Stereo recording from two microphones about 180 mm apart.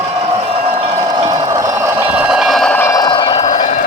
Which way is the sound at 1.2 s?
20° right (ahead or behind).